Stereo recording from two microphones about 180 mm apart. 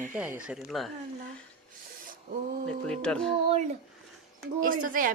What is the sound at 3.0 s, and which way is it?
Speech, 5° left (ahead or behind).